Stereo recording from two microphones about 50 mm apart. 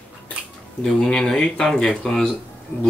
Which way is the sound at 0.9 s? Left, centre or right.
Centre.